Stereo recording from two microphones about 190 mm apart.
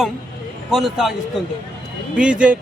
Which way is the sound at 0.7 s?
Centre (ahead or behind).